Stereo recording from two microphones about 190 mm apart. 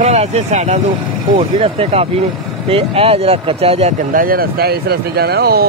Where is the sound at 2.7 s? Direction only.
30° right (ahead or behind).